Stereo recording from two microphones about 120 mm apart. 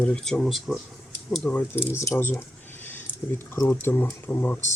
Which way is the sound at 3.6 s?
15° left (ahead or behind).